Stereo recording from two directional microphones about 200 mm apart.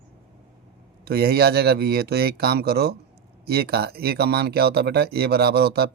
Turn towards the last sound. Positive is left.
turn(degrees=-55)  # may be behind; listen again after turning